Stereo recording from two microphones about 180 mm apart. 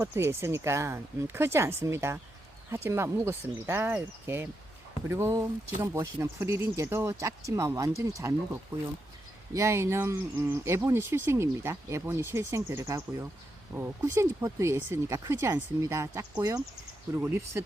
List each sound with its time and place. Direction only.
0.0 s speech: 15° right (ahead or behind)
9.5 s speech: 15° right (ahead or behind)